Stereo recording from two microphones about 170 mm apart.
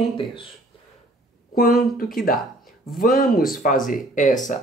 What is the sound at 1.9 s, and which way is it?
Speech, 55° left (ahead or behind).